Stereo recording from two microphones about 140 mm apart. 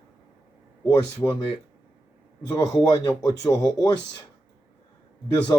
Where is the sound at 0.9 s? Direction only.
30° left (ahead or behind).